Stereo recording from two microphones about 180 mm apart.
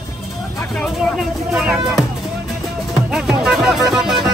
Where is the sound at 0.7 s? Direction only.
Centre (ahead or behind).